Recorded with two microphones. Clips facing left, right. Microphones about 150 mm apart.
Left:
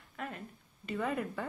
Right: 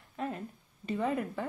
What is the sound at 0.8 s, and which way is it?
Speech, 25° right (ahead or behind).